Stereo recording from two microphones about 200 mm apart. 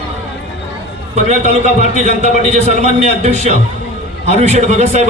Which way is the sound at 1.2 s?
35° right (ahead or behind).